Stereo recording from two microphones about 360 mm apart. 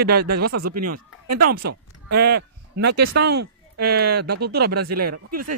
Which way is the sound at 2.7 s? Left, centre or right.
Right.